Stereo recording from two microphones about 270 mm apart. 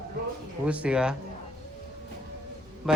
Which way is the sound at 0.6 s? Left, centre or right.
Centre.